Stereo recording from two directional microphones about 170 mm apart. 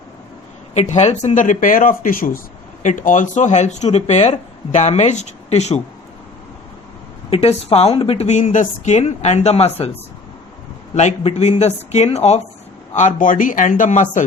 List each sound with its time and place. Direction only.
0.7 s speech: 40° left (ahead or behind)
7.3 s a woman's voice: 35° left (ahead or behind)
10.9 s a woman's voice: 40° left (ahead or behind)